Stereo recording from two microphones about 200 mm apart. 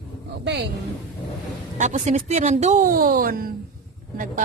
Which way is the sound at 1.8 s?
35° right (ahead or behind).